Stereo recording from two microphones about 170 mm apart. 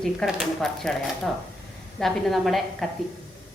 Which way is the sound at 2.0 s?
Centre (ahead or behind).